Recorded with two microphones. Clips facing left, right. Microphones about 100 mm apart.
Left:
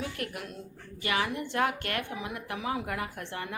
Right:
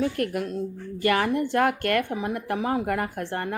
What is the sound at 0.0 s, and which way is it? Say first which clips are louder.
Speech: right 11 dB; 50° right (ahead or behind).